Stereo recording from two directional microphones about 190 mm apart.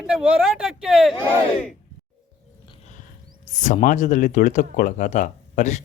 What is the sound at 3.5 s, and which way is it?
Speech, 40° left (ahead or behind).